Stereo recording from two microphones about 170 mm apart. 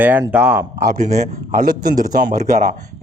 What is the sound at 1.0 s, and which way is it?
A man's voice, 45° right (ahead or behind).